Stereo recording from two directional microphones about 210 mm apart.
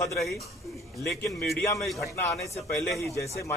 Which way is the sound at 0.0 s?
15° left (ahead or behind).